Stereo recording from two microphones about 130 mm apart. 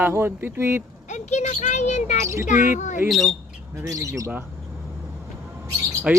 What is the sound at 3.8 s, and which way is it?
Speech, 25° right (ahead or behind).